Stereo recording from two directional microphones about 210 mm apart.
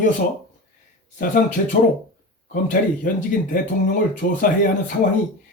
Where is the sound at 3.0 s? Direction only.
40° left (ahead or behind).